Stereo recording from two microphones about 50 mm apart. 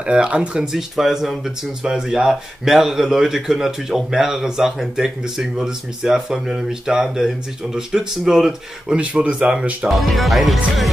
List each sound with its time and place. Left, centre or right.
0.0 s speech: right
0.7 s speech: centre
9.2 s speech: right
9.8 s speech: centre